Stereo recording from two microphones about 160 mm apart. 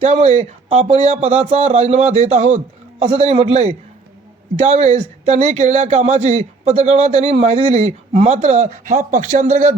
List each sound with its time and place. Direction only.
0.0 s speech: 45° right (ahead or behind)